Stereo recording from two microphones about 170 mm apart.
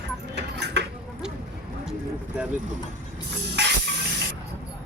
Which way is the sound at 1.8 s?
5° right (ahead or behind).